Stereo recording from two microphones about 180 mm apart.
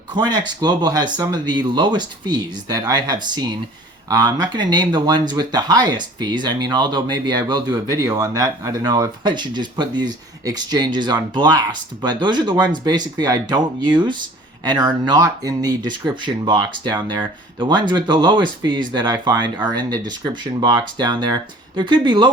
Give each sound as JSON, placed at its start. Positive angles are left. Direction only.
{"t": 0.2, "sound": "speech", "side_deg": -25}